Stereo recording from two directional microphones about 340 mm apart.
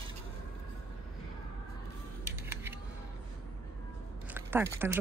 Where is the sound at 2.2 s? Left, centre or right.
Centre.